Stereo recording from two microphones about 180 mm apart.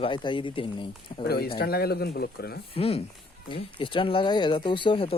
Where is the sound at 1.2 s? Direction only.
60° left (ahead or behind).